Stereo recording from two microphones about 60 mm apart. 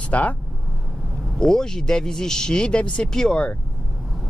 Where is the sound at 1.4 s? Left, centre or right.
Centre.